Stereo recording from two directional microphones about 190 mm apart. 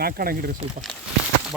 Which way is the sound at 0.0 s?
50° right (ahead or behind).